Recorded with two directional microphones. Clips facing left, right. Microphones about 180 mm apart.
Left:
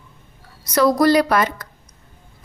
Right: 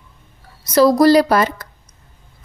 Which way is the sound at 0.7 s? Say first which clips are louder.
Right 4 dB; 30° right (ahead or behind).